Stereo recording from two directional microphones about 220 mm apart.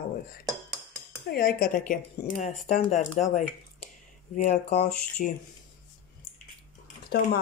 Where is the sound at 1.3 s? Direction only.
40° left (ahead or behind).